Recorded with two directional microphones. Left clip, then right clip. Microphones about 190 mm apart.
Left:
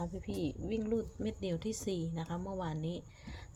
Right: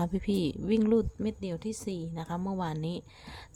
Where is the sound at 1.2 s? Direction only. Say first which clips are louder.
Right 3 dB; 20° right (ahead or behind).